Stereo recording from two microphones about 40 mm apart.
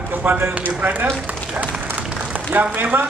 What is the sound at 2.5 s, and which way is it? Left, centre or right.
Speech, right.